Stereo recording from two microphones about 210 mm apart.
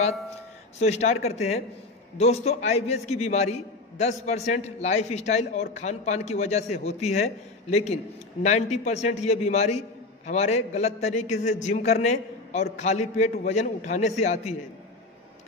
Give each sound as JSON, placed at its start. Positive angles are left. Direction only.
{"t": 0.7, "sound": "a man's voice", "side_deg": 30}